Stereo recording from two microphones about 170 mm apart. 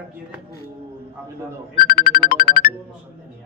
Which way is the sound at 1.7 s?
60° left (ahead or behind).